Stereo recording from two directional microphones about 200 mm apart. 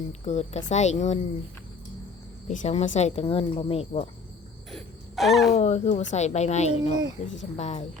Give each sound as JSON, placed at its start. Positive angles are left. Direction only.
{"t": 0.1, "sound": "speech", "side_deg": 35}
{"t": 2.5, "sound": "speech", "side_deg": 35}
{"t": 4.7, "sound": "speech", "side_deg": 0}
{"t": 5.5, "sound": "speech", "side_deg": 35}